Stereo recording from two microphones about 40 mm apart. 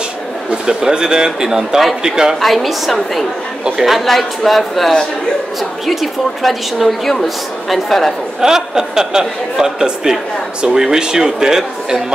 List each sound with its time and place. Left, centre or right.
0.7 s speech: centre
2.4 s a woman's voice: centre
8.4 s speech: centre